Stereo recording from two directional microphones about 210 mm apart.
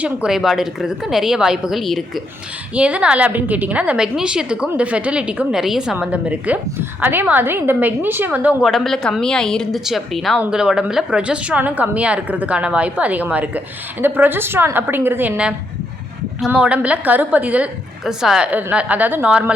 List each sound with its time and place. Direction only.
0.0 s a woman's voice: 5° right (ahead or behind)